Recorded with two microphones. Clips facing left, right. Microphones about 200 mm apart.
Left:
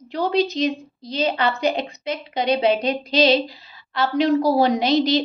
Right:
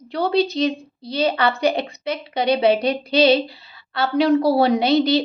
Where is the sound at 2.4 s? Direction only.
30° right (ahead or behind).